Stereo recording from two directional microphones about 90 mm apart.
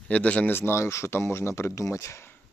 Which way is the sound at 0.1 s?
15° left (ahead or behind).